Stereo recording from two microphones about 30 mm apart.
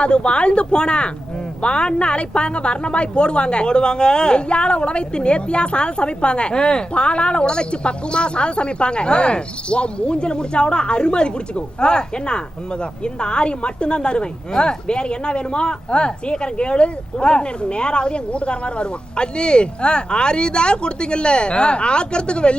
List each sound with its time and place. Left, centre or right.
0.0 s speech: left